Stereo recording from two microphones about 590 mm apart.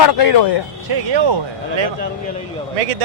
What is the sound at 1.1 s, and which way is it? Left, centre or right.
Speech, right.